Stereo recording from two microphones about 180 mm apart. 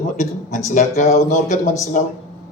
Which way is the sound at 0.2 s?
40° left (ahead or behind).